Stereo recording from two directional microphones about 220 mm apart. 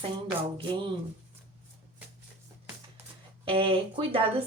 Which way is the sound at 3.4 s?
25° right (ahead or behind).